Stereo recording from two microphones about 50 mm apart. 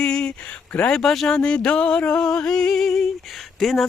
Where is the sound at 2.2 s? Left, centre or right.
Centre.